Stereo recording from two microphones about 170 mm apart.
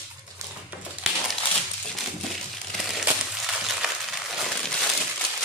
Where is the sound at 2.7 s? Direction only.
Centre (ahead or behind).